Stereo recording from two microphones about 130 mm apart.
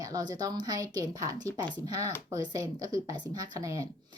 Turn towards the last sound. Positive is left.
turn(degrees=-25)  # may be behind; listen again after turning